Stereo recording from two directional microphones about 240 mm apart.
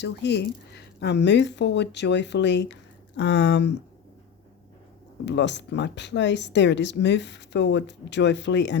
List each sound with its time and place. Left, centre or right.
0.0 s speech: left
5.2 s speech: left